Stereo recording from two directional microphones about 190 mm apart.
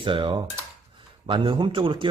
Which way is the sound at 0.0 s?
25° right (ahead or behind).